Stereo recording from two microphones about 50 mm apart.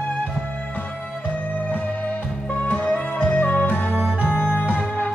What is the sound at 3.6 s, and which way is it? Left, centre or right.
Music, left.